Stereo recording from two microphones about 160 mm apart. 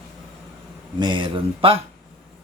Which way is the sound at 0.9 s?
30° right (ahead or behind).